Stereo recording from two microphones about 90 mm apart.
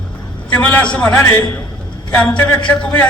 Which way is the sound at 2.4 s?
20° left (ahead or behind).